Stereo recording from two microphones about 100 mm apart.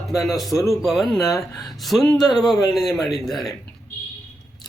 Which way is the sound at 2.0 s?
10° left (ahead or behind).